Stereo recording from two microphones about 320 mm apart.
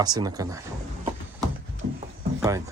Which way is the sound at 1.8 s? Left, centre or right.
Right.